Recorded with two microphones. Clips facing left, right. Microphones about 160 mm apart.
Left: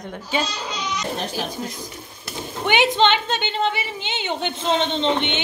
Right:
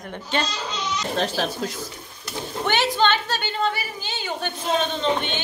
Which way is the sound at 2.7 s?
20° left (ahead or behind).